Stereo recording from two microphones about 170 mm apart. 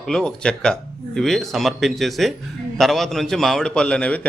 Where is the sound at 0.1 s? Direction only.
5° left (ahead or behind).